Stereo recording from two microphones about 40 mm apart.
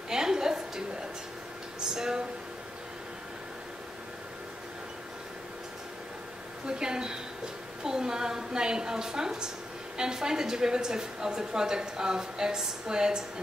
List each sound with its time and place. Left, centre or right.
0.1 s a sound: centre
1.9 s music: centre
6.6 s a woman's voice: centre